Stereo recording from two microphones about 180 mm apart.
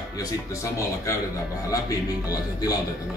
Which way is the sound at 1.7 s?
20° left (ahead or behind).